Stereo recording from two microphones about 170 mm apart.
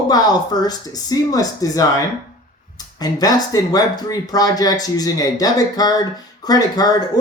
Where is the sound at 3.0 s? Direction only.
25° left (ahead or behind).